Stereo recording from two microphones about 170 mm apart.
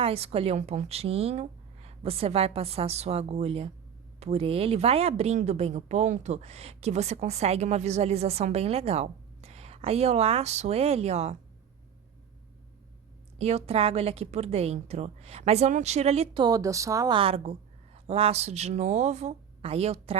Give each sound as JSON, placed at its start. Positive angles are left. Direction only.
{"t": 0.0, "sound": "speech", "side_deg": -35}
{"t": 13.4, "sound": "speech", "side_deg": -40}